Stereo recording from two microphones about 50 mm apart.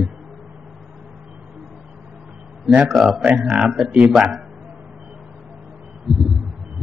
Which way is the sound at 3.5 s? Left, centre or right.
Centre.